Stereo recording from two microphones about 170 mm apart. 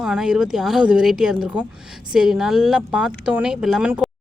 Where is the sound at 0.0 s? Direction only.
5° right (ahead or behind).